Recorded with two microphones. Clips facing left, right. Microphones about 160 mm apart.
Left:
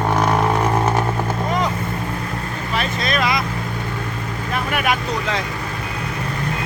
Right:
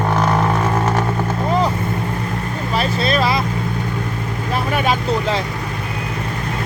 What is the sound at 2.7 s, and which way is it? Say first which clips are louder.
Vehicle: right 4 dB; 30° right (ahead or behind).